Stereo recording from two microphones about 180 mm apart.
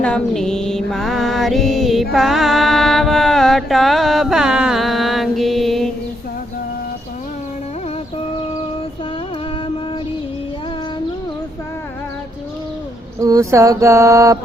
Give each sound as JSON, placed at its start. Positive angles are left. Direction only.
{"t": 0.0, "sound": "mantra", "side_deg": 5}
{"t": 13.2, "sound": "mantra", "side_deg": -20}